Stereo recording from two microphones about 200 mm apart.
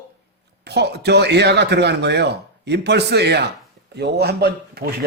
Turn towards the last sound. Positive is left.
turn(degrees=-50)  # may be behind; listen again after turning